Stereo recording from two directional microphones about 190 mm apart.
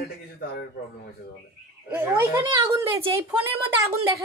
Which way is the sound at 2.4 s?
25° right (ahead or behind).